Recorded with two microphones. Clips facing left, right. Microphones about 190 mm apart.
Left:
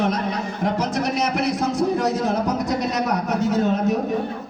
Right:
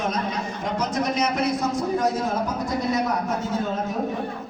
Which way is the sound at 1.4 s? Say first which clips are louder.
Left 2 dB; 75° left (ahead or behind).